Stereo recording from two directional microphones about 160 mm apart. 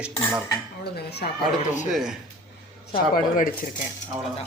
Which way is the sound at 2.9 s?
60° left (ahead or behind).